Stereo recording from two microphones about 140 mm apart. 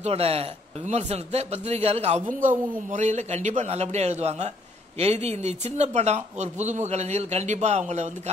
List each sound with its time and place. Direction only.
0.0 s speech: 45° right (ahead or behind)